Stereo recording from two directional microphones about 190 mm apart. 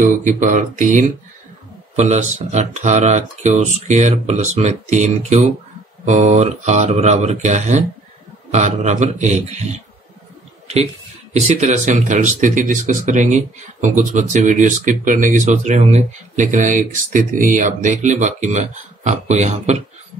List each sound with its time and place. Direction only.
0.0 s speech: 40° right (ahead or behind)
11.3 s speech: 35° right (ahead or behind)